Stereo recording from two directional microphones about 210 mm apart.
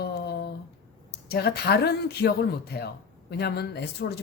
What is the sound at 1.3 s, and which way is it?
Speech, 50° left (ahead or behind).